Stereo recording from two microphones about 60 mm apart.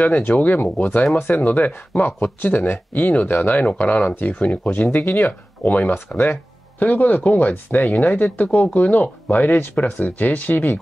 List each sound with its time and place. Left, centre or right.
0.0 s speech: left